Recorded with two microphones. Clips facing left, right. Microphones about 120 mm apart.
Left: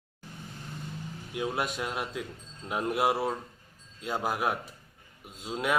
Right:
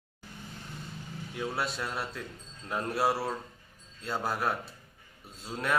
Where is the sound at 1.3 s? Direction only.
10° left (ahead or behind).